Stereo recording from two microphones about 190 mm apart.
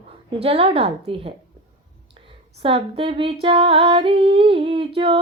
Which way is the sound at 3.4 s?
30° right (ahead or behind).